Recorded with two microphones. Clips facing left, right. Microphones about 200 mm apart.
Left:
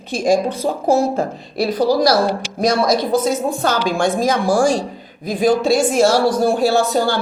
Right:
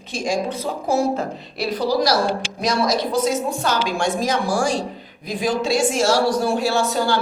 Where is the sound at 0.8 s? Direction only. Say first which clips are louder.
Left 4 dB; 50° left (ahead or behind).